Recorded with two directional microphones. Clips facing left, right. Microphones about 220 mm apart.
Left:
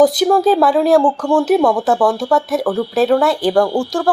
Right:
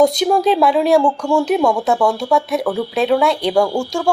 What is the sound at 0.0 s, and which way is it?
Speech, 5° left (ahead or behind).